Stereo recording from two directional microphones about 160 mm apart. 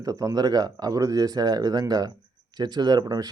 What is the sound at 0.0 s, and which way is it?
Speech, 20° right (ahead or behind).